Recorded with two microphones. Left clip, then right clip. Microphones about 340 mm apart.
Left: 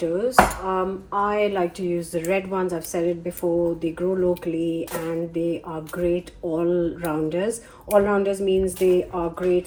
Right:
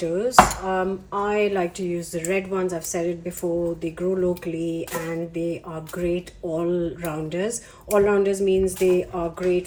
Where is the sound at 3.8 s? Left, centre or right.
Centre.